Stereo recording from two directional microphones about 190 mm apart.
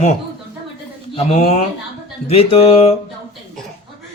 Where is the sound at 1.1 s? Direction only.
35° left (ahead or behind).